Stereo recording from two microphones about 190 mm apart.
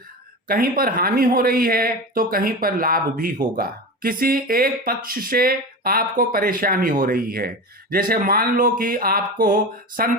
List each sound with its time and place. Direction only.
0.4 s speech: 50° right (ahead or behind)